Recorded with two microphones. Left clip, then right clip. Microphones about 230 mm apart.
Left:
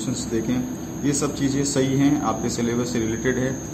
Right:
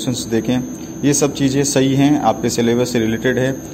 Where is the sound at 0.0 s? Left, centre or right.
Right.